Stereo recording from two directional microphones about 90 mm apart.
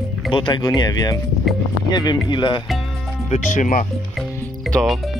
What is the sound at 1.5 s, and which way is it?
Speech, centre (ahead or behind).